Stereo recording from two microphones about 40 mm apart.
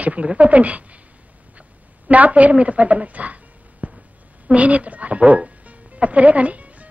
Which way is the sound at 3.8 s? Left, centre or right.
Right.